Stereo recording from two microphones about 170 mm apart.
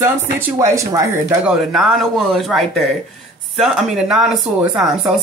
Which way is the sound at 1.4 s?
Centre (ahead or behind).